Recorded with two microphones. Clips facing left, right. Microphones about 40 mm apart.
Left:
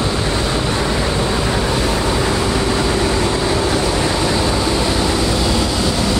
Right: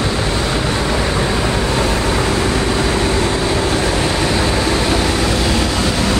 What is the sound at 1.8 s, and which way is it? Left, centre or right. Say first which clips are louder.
Vehicle: right 1 dB; right.